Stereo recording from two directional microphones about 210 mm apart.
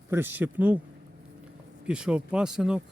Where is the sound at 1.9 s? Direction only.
5° right (ahead or behind).